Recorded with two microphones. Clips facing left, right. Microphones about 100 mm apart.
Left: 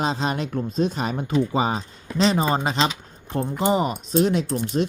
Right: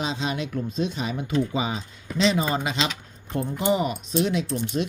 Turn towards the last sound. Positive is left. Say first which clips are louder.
# left 3 dB
turn(degrees=35)  # may be behind; listen again after turning